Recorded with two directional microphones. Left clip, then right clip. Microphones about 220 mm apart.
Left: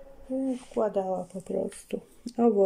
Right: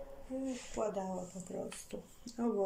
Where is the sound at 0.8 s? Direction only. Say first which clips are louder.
Left 11 dB; 40° left (ahead or behind).